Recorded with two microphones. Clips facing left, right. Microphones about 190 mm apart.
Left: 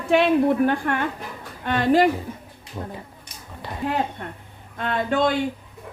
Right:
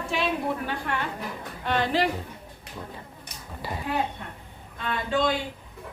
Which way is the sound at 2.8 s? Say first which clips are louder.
Left 6 dB; 30° left (ahead or behind).